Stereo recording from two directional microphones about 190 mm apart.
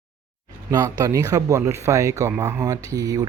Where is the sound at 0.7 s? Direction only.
20° right (ahead or behind).